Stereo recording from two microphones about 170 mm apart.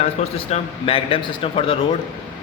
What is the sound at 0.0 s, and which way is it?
Speech, 35° left (ahead or behind).